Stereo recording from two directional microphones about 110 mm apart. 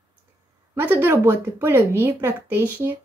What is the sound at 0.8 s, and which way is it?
Speech, 20° right (ahead or behind).